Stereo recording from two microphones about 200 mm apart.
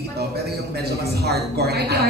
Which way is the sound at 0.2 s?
50° right (ahead or behind).